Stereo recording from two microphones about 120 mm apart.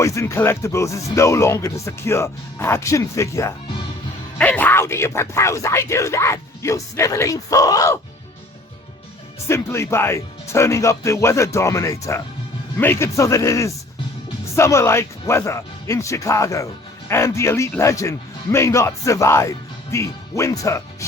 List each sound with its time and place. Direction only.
0.0 s speech: 25° left (ahead or behind)
4.4 s speech: 15° left (ahead or behind); by 7.9 s 30° left (ahead or behind)
9.5 s speech: 20° left (ahead or behind)